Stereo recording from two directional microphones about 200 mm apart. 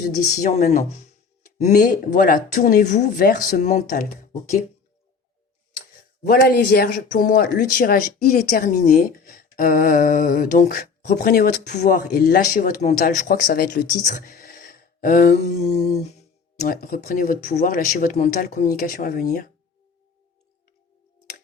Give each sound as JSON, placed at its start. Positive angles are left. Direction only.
{"t": 0.3, "sound": "speech", "side_deg": 40}
{"t": 6.2, "sound": "speech", "side_deg": 50}
{"t": 15.4, "sound": "speech", "side_deg": 30}
{"t": 16.6, "sound": "speech", "side_deg": 45}